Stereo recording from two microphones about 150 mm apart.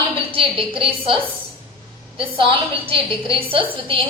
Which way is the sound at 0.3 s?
35° right (ahead or behind).